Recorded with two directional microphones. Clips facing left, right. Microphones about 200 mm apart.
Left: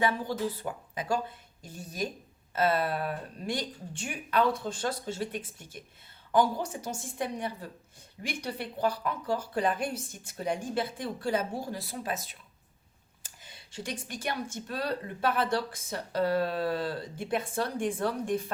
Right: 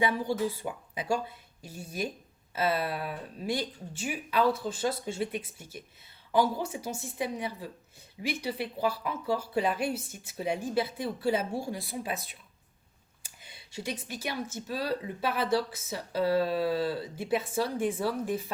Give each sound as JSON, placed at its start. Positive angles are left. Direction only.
{"t": 0.3, "sound": "speech", "side_deg": -10}
{"t": 2.9, "sound": "speech", "side_deg": 45}
{"t": 3.4, "sound": "speech", "side_deg": -5}
{"t": 13.4, "sound": "speech", "side_deg": -10}